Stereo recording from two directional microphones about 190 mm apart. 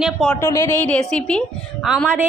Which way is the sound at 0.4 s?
15° left (ahead or behind).